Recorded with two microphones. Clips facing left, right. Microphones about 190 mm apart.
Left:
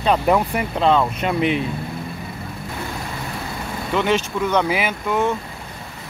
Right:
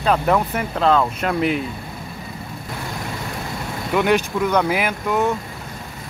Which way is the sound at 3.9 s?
10° right (ahead or behind).